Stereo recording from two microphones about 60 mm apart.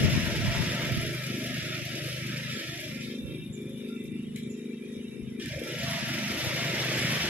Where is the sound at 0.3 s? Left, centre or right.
Right.